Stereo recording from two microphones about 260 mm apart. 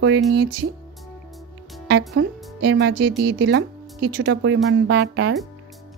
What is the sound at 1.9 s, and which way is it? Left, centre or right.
Speech, right.